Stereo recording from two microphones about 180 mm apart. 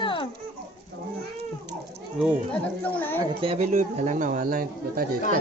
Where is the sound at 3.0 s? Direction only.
10° left (ahead or behind).